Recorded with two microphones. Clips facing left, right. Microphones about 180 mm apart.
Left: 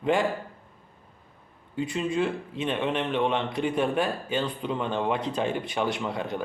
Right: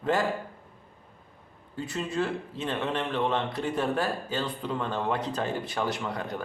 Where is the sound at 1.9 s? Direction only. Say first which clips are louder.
Left 2 dB; 20° left (ahead or behind).